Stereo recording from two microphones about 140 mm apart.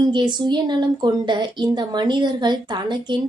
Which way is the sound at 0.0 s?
35° right (ahead or behind).